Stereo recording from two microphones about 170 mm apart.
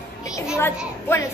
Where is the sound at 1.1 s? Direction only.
15° left (ahead or behind).